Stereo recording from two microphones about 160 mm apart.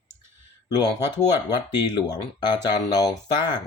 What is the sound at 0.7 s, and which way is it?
Speech, 25° left (ahead or behind).